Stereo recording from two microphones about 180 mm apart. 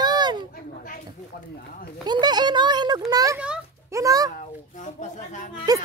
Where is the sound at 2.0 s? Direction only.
25° right (ahead or behind).